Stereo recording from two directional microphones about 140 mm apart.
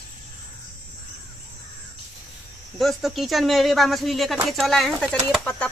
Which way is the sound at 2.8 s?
Centre (ahead or behind).